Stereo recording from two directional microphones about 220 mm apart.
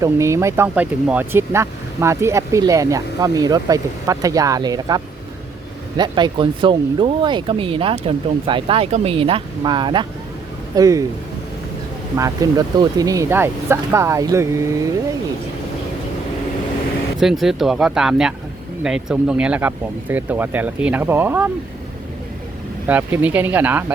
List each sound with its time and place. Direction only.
0.0 s speech: 15° right (ahead or behind)
12.1 s speech: 15° right (ahead or behind)
17.2 s speech: centre (ahead or behind)
22.9 s speech: 10° right (ahead or behind)